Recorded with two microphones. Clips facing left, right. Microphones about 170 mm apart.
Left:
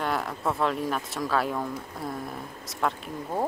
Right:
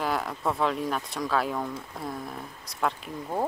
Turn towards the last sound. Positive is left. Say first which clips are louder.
# even
turn(degrees=0)  # may be behind; listen again after turning